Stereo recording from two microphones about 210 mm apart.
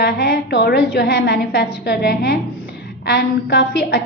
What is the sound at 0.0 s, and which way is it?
A woman's voice, 50° left (ahead or behind).